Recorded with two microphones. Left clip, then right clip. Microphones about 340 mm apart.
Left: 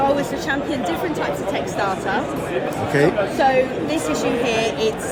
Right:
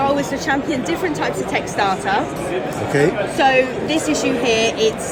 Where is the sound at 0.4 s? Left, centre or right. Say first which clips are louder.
Right 2 dB; right.